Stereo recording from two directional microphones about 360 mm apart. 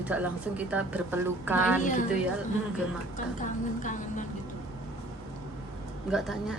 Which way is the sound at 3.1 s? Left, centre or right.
Left.